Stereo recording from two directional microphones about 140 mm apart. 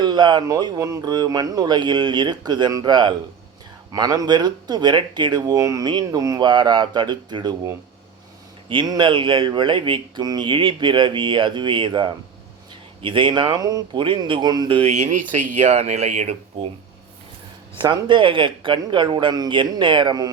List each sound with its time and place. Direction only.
0.0 s speech: 30° right (ahead or behind)
8.7 s speech: 35° right (ahead or behind)
14.8 s speech: 55° right (ahead or behind)
17.7 s speech: 35° right (ahead or behind)